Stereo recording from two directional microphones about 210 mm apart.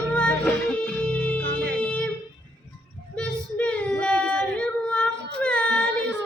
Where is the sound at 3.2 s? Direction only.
5° left (ahead or behind).